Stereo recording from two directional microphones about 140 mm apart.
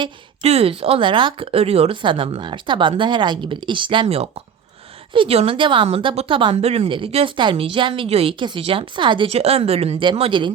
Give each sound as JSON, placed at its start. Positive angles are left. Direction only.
{"t": 0.4, "sound": "a woman's voice", "side_deg": -45}